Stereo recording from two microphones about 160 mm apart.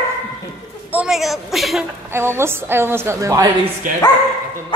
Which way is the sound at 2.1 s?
15° right (ahead or behind).